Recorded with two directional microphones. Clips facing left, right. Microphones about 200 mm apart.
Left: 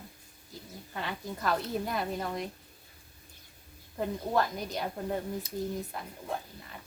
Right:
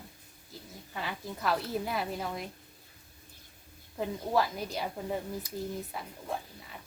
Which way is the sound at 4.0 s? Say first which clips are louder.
Even; 5° right (ahead or behind).